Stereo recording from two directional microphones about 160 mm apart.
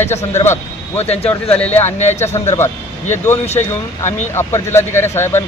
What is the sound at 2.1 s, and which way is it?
Speech, 15° left (ahead or behind).